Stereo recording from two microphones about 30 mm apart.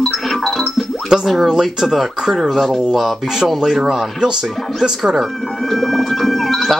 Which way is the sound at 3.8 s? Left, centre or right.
Centre.